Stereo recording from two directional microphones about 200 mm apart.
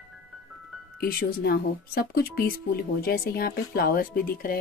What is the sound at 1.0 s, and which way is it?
Speech, 50° left (ahead or behind).